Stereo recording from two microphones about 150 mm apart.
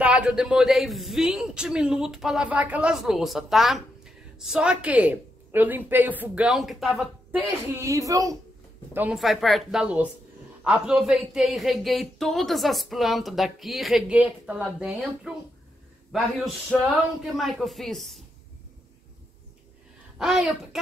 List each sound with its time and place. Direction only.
0.0 s a man's voice: 10° right (ahead or behind)
7.6 s speech: 20° right (ahead or behind)
8.9 s speech: 10° right (ahead or behind)
9.2 s a man's voice: centre (ahead or behind)
20.2 s a man's voice: 5° right (ahead or behind)